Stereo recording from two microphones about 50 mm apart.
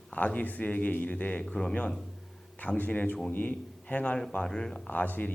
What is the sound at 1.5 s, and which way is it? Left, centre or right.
Speech, centre.